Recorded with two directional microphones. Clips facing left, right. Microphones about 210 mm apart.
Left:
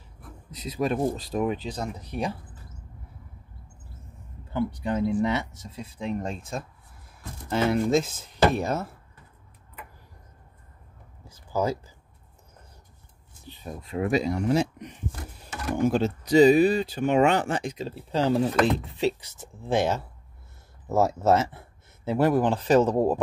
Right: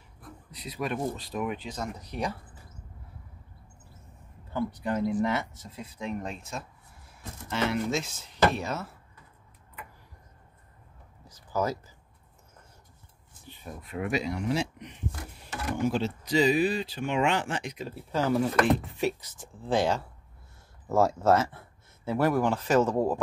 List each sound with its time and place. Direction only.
0.7 s speech: 30° left (ahead or behind)
4.6 s speech: 20° left (ahead or behind); by 8.1 s 35° left (ahead or behind)
8.2 s speech: 55° left (ahead or behind)
13.7 s speech: 30° left (ahead or behind)
21.0 s speech: 20° left (ahead or behind)
22.6 s speech: 30° left (ahead or behind)
22.8 s speech: 20° left (ahead or behind)